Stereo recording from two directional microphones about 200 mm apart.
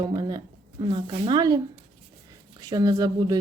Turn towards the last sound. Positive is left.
turn(degrees=-20)  # may be behind; listen again after turning